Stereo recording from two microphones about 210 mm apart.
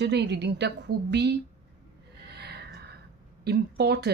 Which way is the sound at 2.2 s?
50° right (ahead or behind).